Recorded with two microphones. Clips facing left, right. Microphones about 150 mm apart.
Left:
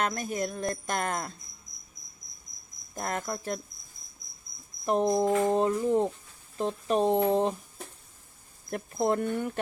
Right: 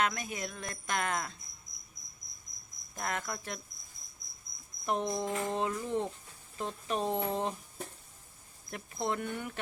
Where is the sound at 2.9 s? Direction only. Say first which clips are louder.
Left 4 dB; 45° left (ahead or behind).